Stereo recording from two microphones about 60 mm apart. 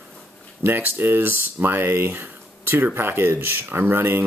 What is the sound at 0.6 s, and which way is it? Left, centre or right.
Speech, right.